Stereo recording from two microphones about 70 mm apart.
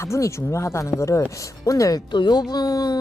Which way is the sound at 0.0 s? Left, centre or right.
Left.